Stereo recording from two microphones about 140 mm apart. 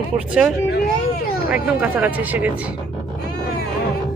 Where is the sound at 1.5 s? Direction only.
10° right (ahead or behind).